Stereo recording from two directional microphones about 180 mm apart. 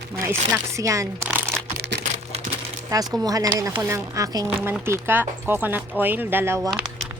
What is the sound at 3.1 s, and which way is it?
A woman's voice, 20° right (ahead or behind).